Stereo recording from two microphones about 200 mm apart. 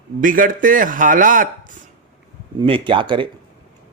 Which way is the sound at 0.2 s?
45° right (ahead or behind).